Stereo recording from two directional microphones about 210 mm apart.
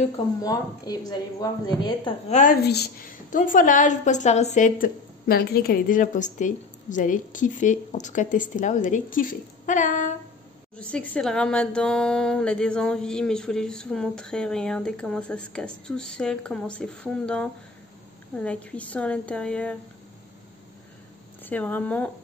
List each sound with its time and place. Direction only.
0.4 s a woman's voice: 15° left (ahead or behind)
2.2 s a woman's voice: 35° left (ahead or behind)
2.6 s a woman's voice: 50° left (ahead or behind)
10.8 s speech: 5° left (ahead or behind)
21.5 s a woman's voice: 5° left (ahead or behind)